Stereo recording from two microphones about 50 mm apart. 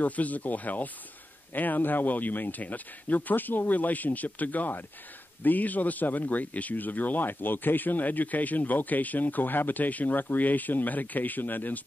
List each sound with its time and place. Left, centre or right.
0.0 s a man's voice: left